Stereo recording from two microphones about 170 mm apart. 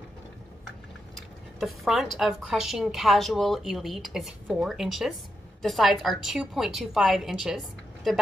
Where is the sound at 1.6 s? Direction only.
Centre (ahead or behind).